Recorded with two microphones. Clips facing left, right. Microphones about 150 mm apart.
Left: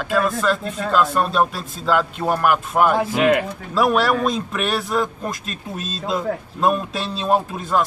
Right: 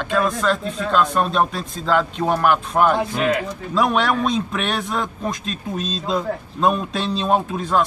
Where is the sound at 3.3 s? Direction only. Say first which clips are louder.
Left 3 dB; 60° left (ahead or behind).